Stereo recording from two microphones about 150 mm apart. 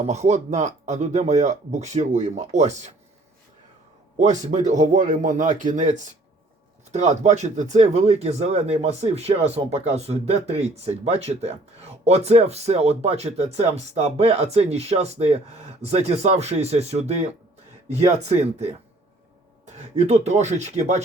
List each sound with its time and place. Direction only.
0.0 s speech: 50° right (ahead or behind)
4.2 s speech: 50° right (ahead or behind)